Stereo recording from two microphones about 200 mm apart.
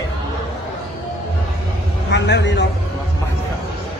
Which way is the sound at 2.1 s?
60° left (ahead or behind).